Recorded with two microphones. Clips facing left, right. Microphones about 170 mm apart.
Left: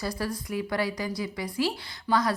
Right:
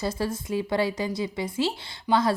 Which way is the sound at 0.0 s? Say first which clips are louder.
Right 3 dB; 25° right (ahead or behind).